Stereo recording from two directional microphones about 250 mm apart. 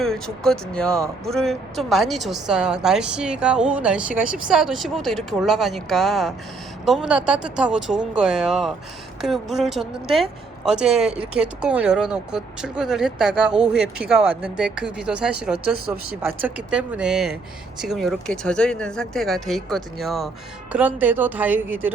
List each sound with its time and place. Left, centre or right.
0.0 s a woman's voice: centre